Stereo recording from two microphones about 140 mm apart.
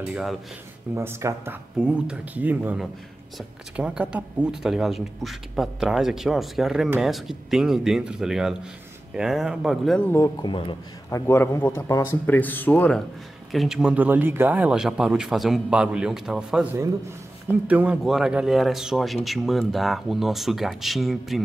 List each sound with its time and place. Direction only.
0.1 s speech: 5° right (ahead or behind)
0.9 s speech: 20° right (ahead or behind); by 10.0 s centre (ahead or behind)
10.0 s speech: 20° left (ahead or behind)
10.4 s speech: 35° left (ahead or behind)
11.1 s a man's voice: 20° left (ahead or behind)
13.5 s speech: centre (ahead or behind)